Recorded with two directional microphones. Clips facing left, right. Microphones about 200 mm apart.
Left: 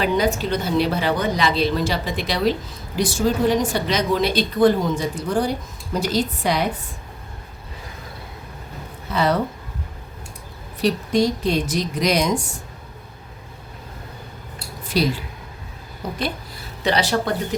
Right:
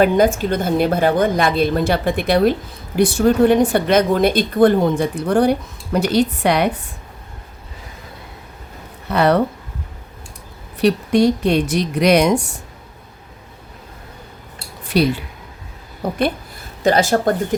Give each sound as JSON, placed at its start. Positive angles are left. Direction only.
{"t": 0.0, "sound": "a woman's voice", "side_deg": -50}
{"t": 9.0, "sound": "a woman's voice", "side_deg": -60}
{"t": 10.8, "sound": "a woman's voice", "side_deg": -60}
{"t": 14.9, "sound": "a woman's voice", "side_deg": -60}
{"t": 16.8, "sound": "speech", "side_deg": -45}